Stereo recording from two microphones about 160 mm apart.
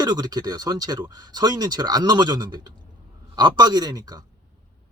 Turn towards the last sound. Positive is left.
turn(degrees=-25)  # may be behind; listen again after turning